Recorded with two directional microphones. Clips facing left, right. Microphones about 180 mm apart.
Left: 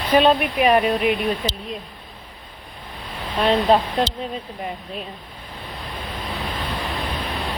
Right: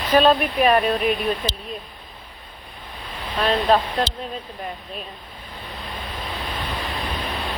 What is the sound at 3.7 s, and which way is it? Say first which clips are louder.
Speech: left 1 dB; 25° left (ahead or behind).